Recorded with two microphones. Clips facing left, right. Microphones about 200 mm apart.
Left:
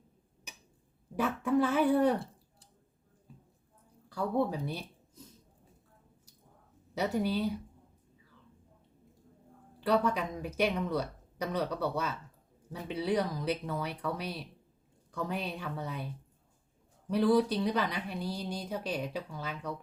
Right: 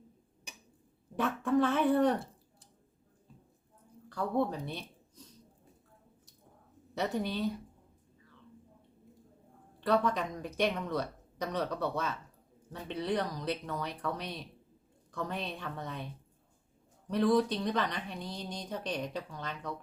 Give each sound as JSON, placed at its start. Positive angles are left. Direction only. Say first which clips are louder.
{"t": 1.1, "sound": "speech", "louder": "even", "side_deg": 5}
{"t": 4.1, "sound": "a woman's voice", "louder": "left 1 dB", "side_deg": 10}
{"t": 6.9, "sound": "speech", "louder": "left 3 dB", "side_deg": 10}
{"t": 9.8, "sound": "speech", "louder": "left 1 dB", "side_deg": 5}
{"t": 17.1, "sound": "speech", "louder": "left 1 dB", "side_deg": 5}